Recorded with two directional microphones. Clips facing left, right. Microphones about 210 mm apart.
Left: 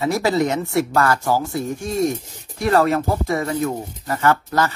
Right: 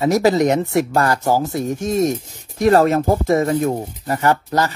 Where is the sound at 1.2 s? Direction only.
40° right (ahead or behind).